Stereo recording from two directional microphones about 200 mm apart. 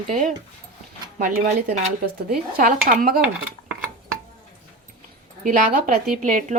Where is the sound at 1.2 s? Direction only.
45° right (ahead or behind).